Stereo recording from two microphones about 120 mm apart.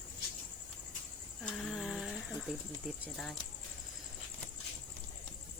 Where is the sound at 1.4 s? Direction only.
5° left (ahead or behind).